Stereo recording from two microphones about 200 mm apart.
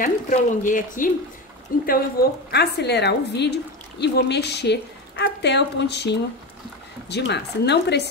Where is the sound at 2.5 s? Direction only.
55° left (ahead or behind).